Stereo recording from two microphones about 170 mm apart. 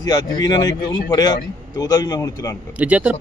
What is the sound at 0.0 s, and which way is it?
Speech, 25° left (ahead or behind).